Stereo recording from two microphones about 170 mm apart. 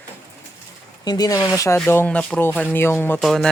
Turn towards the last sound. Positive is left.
turn(degrees=0)  # may be behind; listen again after turning